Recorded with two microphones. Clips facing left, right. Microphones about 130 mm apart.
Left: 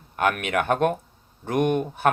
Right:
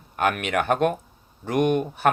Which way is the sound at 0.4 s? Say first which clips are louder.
Even; 50° left (ahead or behind).